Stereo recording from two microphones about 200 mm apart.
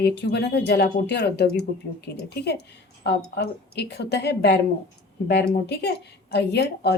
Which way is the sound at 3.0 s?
55° left (ahead or behind).